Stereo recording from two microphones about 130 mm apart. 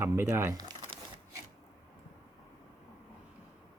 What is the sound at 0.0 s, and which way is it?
Speech, 20° right (ahead or behind).